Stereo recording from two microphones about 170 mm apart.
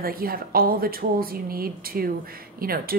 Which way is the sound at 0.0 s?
60° right (ahead or behind).